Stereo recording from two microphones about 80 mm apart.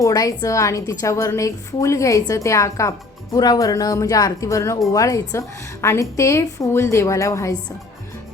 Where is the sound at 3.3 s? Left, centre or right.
Left.